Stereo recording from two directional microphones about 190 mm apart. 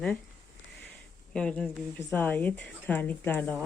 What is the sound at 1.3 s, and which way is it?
Speech, 5° left (ahead or behind).